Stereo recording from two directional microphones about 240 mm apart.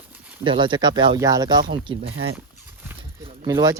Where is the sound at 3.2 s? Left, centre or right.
Right.